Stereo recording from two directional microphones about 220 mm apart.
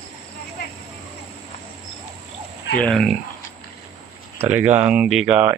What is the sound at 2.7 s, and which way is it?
Speech, 5° left (ahead or behind).